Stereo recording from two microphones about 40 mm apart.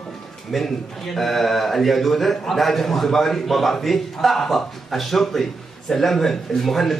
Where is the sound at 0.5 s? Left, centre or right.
Centre.